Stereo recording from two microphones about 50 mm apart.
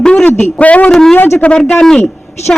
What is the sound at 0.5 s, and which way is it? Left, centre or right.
A man's voice, left.